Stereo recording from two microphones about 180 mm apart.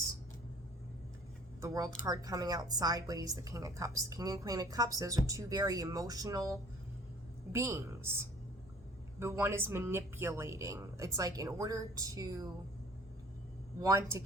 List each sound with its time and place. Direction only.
1.6 s speech: 20° right (ahead or behind)
13.8 s speech: 15° right (ahead or behind)